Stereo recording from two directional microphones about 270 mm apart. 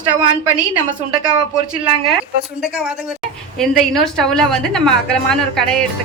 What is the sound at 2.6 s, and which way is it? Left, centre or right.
Speech, centre.